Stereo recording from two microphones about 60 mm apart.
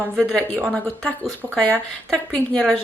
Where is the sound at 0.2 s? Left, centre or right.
Centre.